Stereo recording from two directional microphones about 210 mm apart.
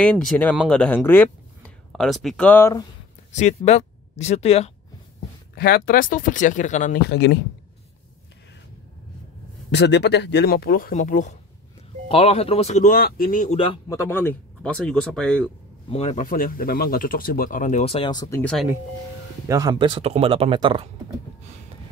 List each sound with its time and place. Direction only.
0.0 s speech: 5° left (ahead or behind)
3.3 s speech: 35° left (ahead or behind)
5.5 s speech: 45° left (ahead or behind)
7.1 s speech: 55° left (ahead or behind)
9.7 s speech: 55° left (ahead or behind); by 13.7 s 30° left (ahead or behind)
13.8 s speech: 10° left (ahead or behind)
15.9 s speech: 35° left (ahead or behind)
18.4 s speech: 5° left (ahead or behind)
19.4 s speech: 15° right (ahead or behind)